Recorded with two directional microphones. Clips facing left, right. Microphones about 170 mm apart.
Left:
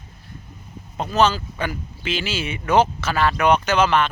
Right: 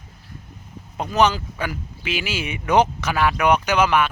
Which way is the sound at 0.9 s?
15° right (ahead or behind).